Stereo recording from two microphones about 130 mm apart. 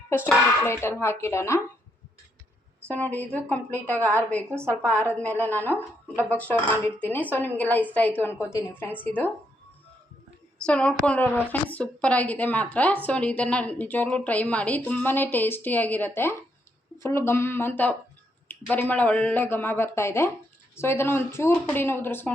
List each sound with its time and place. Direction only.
0.6 s speech: 20° left (ahead or behind)
2.9 s a woman's voice: 10° left (ahead or behind)
10.6 s a woman's voice: 10° left (ahead or behind)